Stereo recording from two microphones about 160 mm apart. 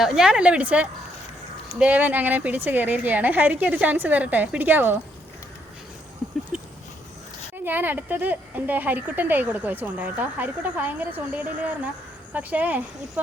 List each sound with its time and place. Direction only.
0.0 s speech: 5° right (ahead or behind)
6.5 s a sound: 5° right (ahead or behind)
7.5 s speech: 10° right (ahead or behind)